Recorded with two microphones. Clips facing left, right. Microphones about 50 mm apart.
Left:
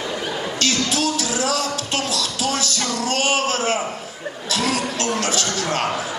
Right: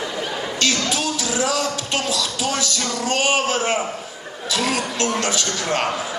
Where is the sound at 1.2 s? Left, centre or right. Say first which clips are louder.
Right 1 dB; right.